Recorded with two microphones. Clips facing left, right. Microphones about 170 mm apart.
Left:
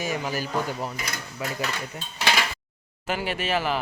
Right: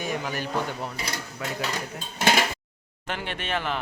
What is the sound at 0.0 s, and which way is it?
Speech, 5° left (ahead or behind).